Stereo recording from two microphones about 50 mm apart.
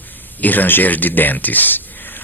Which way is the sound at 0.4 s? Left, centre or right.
Left.